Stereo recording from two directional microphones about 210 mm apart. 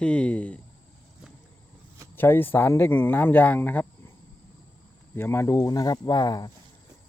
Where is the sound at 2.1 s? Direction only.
10° left (ahead or behind).